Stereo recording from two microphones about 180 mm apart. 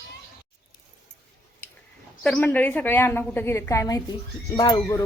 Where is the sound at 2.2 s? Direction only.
5° left (ahead or behind).